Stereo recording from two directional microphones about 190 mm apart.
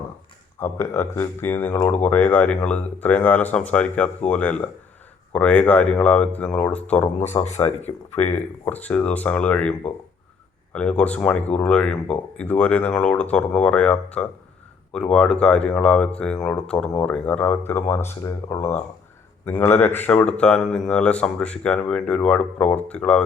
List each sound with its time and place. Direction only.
0.6 s speech: 15° left (ahead or behind)
7.4 s speech: 35° left (ahead or behind)
8.6 s speech: 5° left (ahead or behind)